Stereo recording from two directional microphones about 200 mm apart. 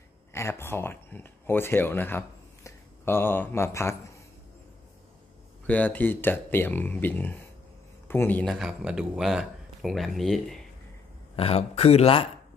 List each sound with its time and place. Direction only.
0.3 s speech: 15° left (ahead or behind)
5.7 s speech: 10° left (ahead or behind)
8.5 s speech: centre (ahead or behind)
11.3 s speech: 30° left (ahead or behind)